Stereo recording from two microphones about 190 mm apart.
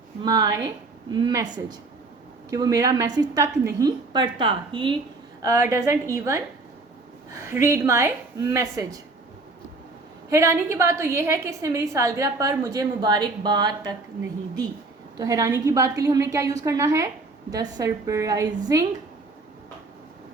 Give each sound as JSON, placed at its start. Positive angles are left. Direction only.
{"t": 0.2, "sound": "a woman's voice", "side_deg": -20}
{"t": 7.4, "sound": "a woman's voice", "side_deg": -15}
{"t": 10.2, "sound": "a woman's voice", "side_deg": -15}
{"t": 15.2, "sound": "a woman's voice", "side_deg": -15}